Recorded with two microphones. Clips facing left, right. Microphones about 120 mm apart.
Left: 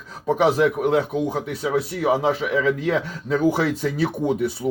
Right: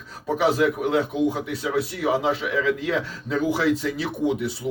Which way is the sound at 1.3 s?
45° left (ahead or behind).